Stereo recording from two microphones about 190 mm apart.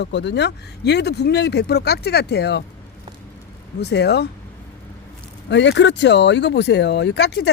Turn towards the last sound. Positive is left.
turn(degrees=60)  # may be behind; listen again after turning